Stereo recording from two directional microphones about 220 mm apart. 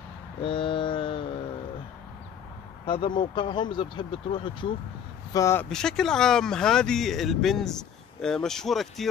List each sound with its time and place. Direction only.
0.4 s mantra: 25° left (ahead or behind)
3.2 s speech: 20° left (ahead or behind); by 9.0 s centre (ahead or behind)